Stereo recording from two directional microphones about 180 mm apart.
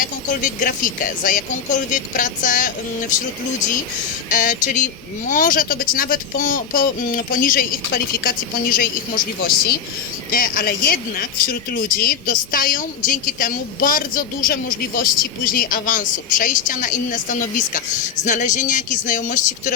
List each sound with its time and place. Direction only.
0.0 s speech: 45° left (ahead or behind)
4.3 s speech: 45° left (ahead or behind)